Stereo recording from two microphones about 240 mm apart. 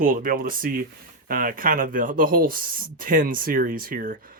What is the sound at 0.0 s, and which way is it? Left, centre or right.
Speech, right.